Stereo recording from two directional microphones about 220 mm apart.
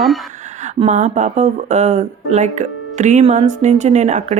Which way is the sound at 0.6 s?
35° right (ahead or behind).